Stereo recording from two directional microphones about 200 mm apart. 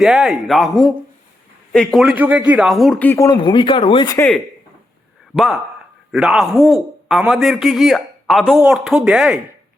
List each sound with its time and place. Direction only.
0.0 s a man's voice: centre (ahead or behind); by 4.2 s 20° left (ahead or behind)
6.1 s a man's voice: 5° right (ahead or behind)